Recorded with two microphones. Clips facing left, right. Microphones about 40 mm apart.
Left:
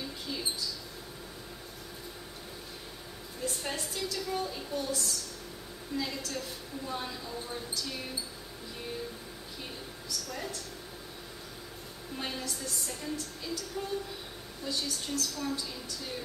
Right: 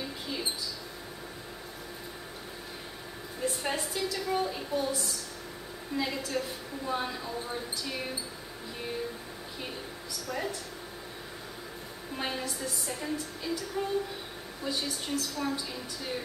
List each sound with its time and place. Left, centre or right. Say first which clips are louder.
0.0 s mouse: right 2 dB; centre
3.4 s a woman's voice: right 4 dB; centre
9.6 s speech: right 4 dB; centre
12.2 s a woman's voice: right 3 dB; centre